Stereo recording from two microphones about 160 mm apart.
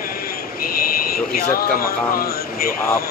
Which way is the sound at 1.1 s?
65° left (ahead or behind).